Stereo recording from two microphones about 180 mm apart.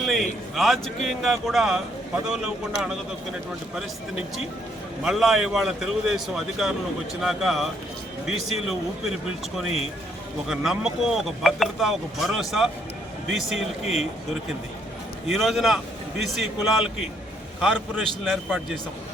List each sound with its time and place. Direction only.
0.0 s a man's voice: centre (ahead or behind)
5.0 s speech: centre (ahead or behind)
10.5 s speech: centre (ahead or behind)
13.8 s speech: 35° left (ahead or behind)
15.3 s speech: centre (ahead or behind)